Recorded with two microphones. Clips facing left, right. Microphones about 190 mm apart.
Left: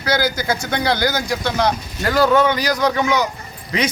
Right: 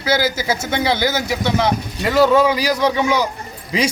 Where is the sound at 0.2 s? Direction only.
5° right (ahead or behind).